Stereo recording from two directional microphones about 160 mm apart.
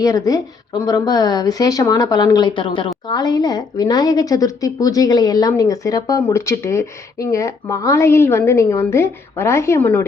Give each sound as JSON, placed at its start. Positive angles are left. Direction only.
{"t": 0.0, "sound": "speech", "side_deg": 20}